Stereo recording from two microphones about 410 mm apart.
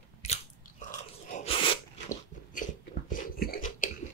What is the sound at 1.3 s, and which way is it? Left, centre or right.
Sneeze, centre.